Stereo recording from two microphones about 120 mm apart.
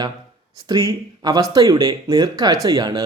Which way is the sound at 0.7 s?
35° right (ahead or behind).